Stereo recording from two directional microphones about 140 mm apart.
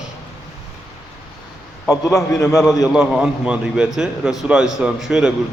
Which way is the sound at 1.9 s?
20° left (ahead or behind).